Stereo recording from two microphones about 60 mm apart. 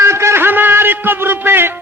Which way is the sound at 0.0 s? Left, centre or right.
Right.